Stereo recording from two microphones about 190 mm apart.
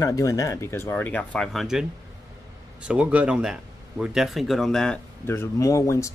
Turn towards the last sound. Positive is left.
turn(degrees=15)  # may be behind; listen again after turning